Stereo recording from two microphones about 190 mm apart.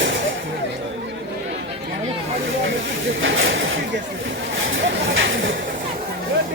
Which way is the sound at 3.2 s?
90° right.